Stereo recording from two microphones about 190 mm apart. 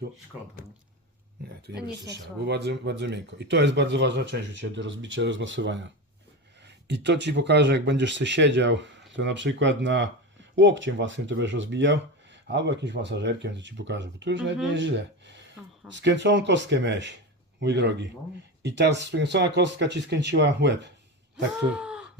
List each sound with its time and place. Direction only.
1.6 s speech: 60° right (ahead or behind)
21.7 s speech: 5° right (ahead or behind)